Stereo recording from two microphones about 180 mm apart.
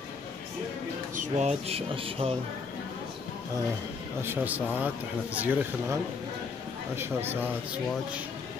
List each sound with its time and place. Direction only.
1.1 s speech: 40° right (ahead or behind)
4.2 s speech: 10° right (ahead or behind)
7.0 s speech: 10° right (ahead or behind)